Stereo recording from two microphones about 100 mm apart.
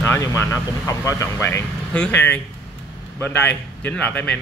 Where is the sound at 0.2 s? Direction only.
30° left (ahead or behind).